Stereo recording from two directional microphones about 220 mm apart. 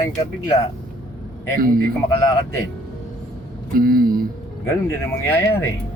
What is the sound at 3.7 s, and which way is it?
Speech, 40° right (ahead or behind).